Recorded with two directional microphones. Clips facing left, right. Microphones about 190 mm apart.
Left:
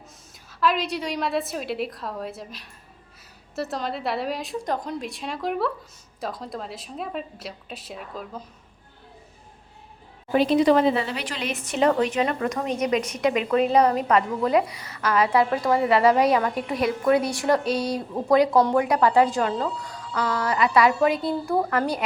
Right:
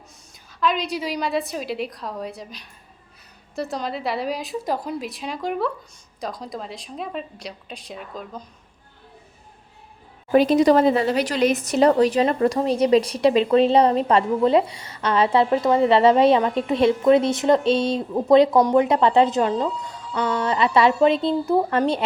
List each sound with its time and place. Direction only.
0.6 s a woman's voice: centre (ahead or behind)
10.3 s speech: 45° right (ahead or behind); by 22.0 s 25° right (ahead or behind)